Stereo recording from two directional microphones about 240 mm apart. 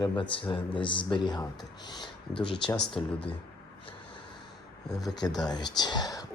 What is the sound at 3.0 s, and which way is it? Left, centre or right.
Speech, centre.